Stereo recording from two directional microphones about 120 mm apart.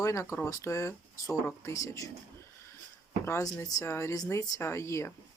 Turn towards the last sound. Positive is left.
turn(degrees=25)  # may be behind; listen again after turning